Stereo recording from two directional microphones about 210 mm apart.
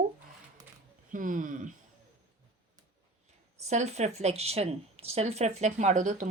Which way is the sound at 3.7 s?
30° right (ahead or behind).